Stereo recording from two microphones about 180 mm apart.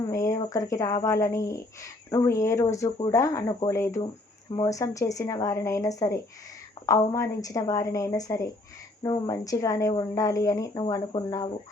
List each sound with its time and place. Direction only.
0.0 s a woman's voice: 20° left (ahead or behind)